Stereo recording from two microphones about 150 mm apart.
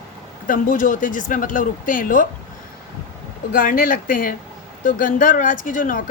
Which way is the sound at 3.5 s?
65° left (ahead or behind).